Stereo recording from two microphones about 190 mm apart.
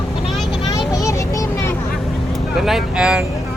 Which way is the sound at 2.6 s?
Centre (ahead or behind).